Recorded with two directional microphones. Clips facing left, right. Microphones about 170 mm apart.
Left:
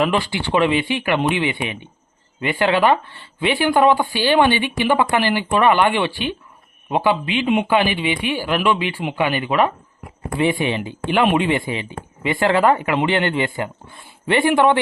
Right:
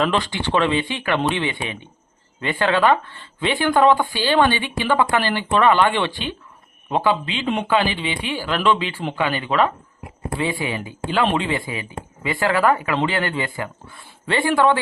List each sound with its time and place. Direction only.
0.0 s speech: 10° left (ahead or behind)